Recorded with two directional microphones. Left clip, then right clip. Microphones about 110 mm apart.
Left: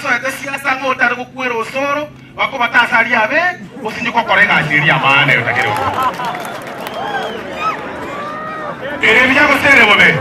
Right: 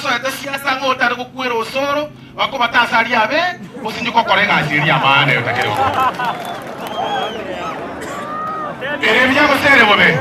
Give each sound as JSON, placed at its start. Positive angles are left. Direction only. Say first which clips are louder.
{"t": 0.0, "sound": "a woman's voice", "louder": "left 2 dB", "side_deg": -20}
{"t": 9.2, "sound": "a woman's voice", "louder": "left 2 dB", "side_deg": -25}